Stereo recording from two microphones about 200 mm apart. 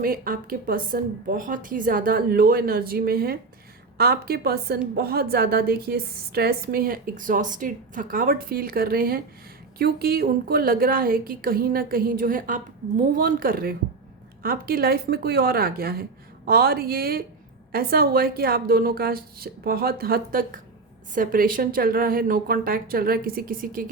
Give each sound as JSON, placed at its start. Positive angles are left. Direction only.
{"t": 0.0, "sound": "a woman's voice", "side_deg": -45}